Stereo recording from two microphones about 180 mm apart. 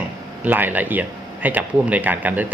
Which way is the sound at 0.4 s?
10° right (ahead or behind).